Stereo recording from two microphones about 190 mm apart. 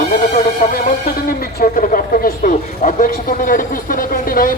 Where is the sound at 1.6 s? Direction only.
45° left (ahead or behind).